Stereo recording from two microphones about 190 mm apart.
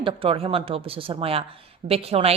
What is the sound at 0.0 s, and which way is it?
A woman's voice, 25° right (ahead or behind).